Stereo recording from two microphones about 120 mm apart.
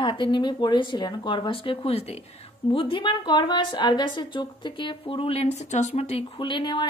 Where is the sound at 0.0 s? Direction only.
45° left (ahead or behind); by 2.2 s 60° left (ahead or behind).